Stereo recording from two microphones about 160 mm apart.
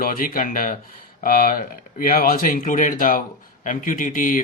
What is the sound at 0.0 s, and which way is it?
Speech, 60° left (ahead or behind).